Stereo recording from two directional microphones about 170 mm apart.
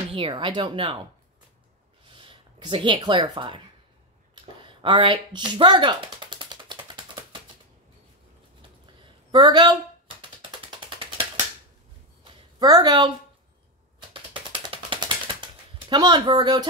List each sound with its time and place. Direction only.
0.1 s speech: 30° right (ahead or behind)
2.1 s speech: 30° right (ahead or behind)
4.6 s a sound: 30° right (ahead or behind)
9.3 s a sound: 25° right (ahead or behind)
12.5 s speech: 25° right (ahead or behind)
14.1 s mechanisms: 30° right (ahead or behind)
15.9 s speech: 25° right (ahead or behind)